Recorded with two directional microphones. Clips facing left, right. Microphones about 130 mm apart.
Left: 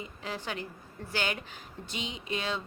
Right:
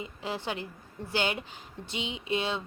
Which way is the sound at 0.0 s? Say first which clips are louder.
Right 3 dB; 25° right (ahead or behind).